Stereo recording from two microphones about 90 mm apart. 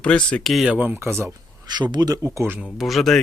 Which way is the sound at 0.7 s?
15° right (ahead or behind).